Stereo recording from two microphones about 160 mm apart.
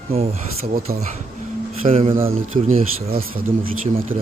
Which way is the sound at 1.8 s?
40° right (ahead or behind).